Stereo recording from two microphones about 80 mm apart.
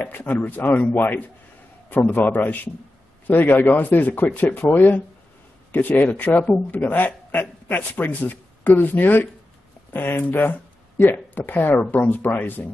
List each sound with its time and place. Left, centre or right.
0.0 s speech: left